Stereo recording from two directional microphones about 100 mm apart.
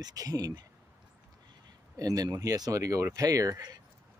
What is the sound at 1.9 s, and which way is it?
Speech, 40° right (ahead or behind).